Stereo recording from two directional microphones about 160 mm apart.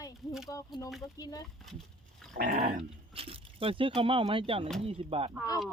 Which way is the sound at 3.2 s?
35° right (ahead or behind).